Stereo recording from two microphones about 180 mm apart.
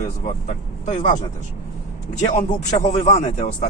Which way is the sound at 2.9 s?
40° left (ahead or behind).